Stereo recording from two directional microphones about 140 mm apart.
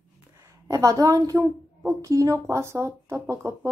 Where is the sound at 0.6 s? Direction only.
25° right (ahead or behind).